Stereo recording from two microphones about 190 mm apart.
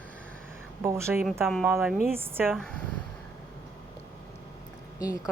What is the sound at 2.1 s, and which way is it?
Speech, 10° right (ahead or behind).